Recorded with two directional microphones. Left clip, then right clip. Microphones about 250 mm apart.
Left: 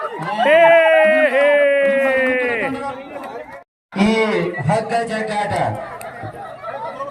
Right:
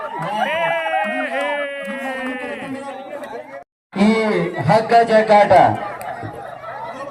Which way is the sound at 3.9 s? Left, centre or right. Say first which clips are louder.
Even; centre.